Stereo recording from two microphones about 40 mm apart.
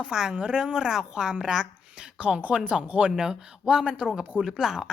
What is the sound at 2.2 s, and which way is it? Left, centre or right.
Speech, right.